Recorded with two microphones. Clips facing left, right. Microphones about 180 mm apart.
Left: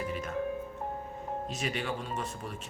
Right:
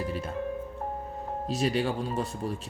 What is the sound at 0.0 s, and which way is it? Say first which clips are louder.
Music: right 2 dB; 35° right (ahead or behind).